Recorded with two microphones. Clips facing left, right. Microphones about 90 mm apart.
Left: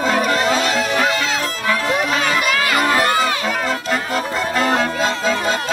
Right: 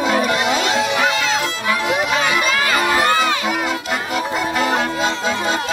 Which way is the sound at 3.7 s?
40° left (ahead or behind).